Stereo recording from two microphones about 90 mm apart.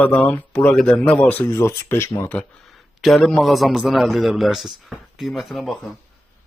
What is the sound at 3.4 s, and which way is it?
A man's voice, centre (ahead or behind).